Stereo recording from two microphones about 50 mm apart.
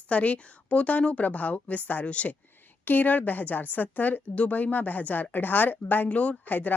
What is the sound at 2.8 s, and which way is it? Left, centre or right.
A woman's voice, left.